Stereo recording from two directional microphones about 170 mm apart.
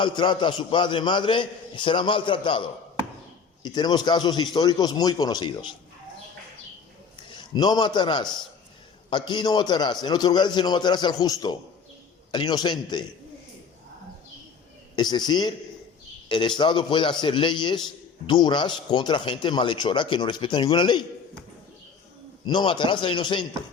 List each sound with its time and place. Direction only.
0.0 s a man's voice: 25° left (ahead or behind)
7.2 s a man's voice: 25° left (ahead or behind)
14.9 s a man's voice: 25° left (ahead or behind)
16.6 s a man's voice: 25° left (ahead or behind)
22.4 s a man's voice: 25° left (ahead or behind)